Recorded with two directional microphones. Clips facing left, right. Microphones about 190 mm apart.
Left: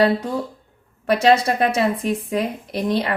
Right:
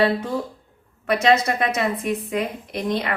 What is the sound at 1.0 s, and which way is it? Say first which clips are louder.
A woman's voice: left 2 dB; 30° left (ahead or behind).